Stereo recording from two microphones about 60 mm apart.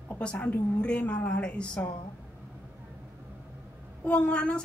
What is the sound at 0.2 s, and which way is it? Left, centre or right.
A woman's voice, left.